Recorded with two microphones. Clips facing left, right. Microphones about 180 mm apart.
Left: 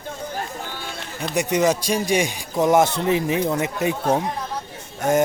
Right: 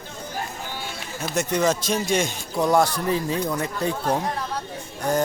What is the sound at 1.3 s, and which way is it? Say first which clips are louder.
A man's voice: left 3 dB; 15° left (ahead or behind).